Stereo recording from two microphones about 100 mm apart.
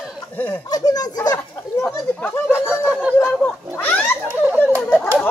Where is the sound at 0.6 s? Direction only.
40° left (ahead or behind).